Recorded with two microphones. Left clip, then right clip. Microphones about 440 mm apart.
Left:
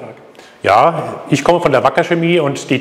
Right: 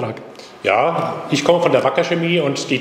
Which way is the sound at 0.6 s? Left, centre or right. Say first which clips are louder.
Left 5 dB; left.